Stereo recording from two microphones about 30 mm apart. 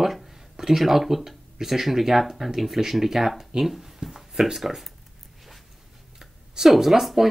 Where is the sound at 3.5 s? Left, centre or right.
Right.